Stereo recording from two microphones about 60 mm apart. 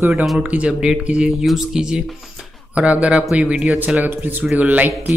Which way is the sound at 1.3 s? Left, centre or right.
Centre.